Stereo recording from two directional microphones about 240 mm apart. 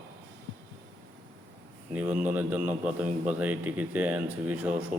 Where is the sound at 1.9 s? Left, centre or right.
Centre.